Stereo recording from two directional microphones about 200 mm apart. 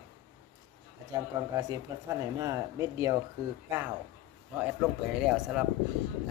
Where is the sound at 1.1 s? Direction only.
15° right (ahead or behind).